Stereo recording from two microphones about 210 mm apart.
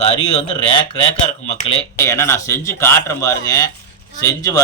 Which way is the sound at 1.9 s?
10° left (ahead or behind).